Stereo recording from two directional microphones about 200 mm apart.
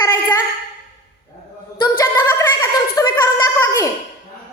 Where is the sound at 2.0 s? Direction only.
10° left (ahead or behind).